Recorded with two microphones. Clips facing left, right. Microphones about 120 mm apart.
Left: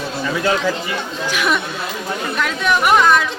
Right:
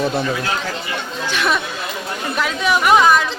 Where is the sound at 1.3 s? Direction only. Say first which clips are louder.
Even; 5° left (ahead or behind).